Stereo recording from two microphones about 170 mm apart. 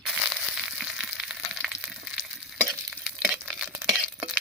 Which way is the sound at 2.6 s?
Centre (ahead or behind).